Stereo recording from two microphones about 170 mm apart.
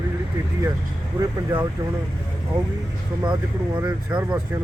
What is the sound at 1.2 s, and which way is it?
Speech, 10° right (ahead or behind).